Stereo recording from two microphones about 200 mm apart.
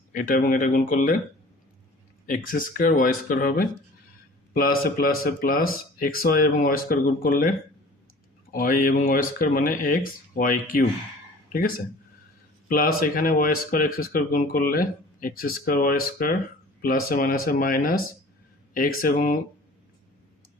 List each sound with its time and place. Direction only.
0.1 s speech: 40° left (ahead or behind)
2.2 s speech: 45° left (ahead or behind)
8.5 s speech: 45° left (ahead or behind)
12.6 s speech: 45° left (ahead or behind)